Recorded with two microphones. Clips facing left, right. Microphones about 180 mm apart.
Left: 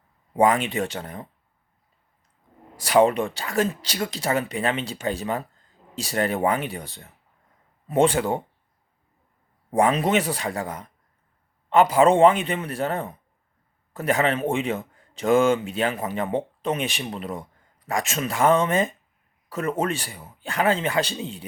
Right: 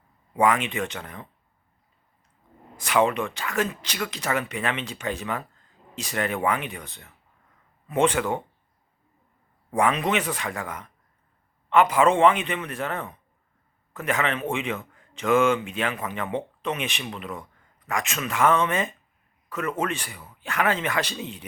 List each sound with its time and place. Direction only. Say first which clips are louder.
0.3 s speech: left 2 dB; 35° left (ahead or behind)
2.8 s speech: left 4 dB; 35° left (ahead or behind)
9.7 s speech: left 3 dB; 35° left (ahead or behind)